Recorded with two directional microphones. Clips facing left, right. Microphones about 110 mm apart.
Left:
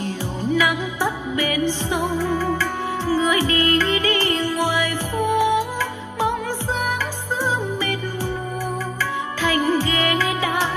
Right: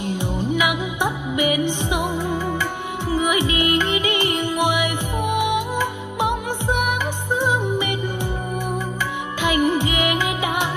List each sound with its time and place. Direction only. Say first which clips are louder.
0.5 s music: left 3 dB; 15° right (ahead or behind)
9.4 s music: right 1 dB; 15° right (ahead or behind)